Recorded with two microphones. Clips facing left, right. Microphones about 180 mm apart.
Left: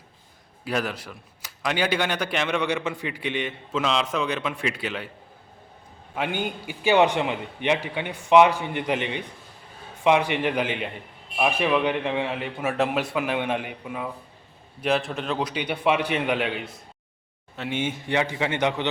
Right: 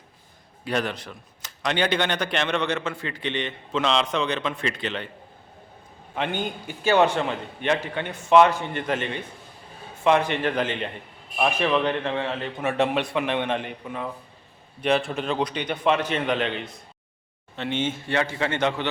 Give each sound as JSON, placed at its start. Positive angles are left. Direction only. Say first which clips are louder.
{"t": 0.6, "sound": "speech", "louder": "right 1 dB", "side_deg": 5}
{"t": 6.1, "sound": "speech", "louder": "even", "side_deg": 10}